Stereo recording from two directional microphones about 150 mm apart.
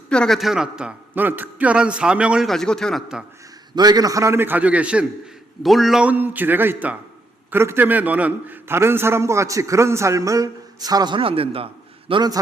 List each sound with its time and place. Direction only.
0.1 s a man's voice: 5° left (ahead or behind)
3.8 s a man's voice: 25° right (ahead or behind)